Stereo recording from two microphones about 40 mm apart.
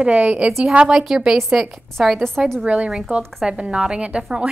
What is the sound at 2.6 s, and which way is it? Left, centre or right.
Speech, right.